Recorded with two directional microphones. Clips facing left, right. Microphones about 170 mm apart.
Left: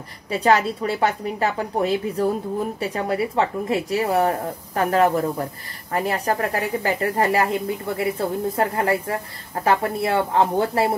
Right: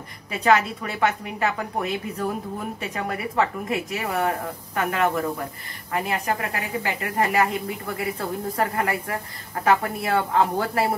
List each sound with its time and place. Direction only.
0.3 s a woman's voice: 35° left (ahead or behind)